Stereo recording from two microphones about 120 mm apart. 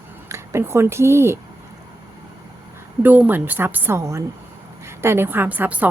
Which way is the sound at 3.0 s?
15° right (ahead or behind).